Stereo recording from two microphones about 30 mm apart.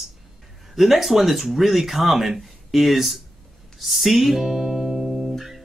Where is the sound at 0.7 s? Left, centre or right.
Centre.